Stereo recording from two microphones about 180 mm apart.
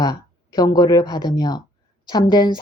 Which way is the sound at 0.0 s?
20° left (ahead or behind).